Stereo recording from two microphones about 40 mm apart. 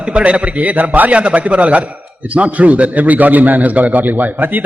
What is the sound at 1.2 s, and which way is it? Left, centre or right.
A man's voice, right.